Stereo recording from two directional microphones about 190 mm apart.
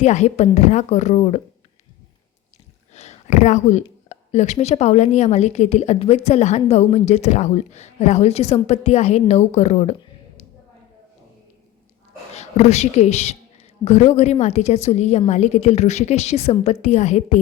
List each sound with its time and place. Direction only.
0.0 s speech: 35° left (ahead or behind)
2.9 s speech: 35° left (ahead or behind)
12.3 s a woman's voice: 35° left (ahead or behind)